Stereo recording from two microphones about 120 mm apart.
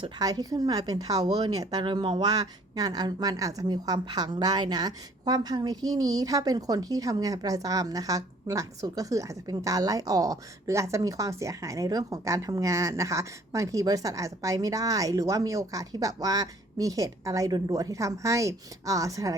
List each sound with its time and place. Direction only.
0.2 s a woman's voice: 35° right (ahead or behind)